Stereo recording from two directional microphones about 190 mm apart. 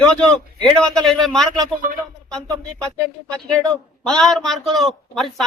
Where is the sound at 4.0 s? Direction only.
5° left (ahead or behind).